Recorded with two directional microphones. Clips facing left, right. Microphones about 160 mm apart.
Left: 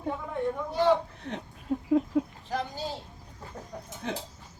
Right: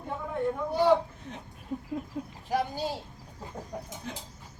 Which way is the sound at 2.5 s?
10° right (ahead or behind).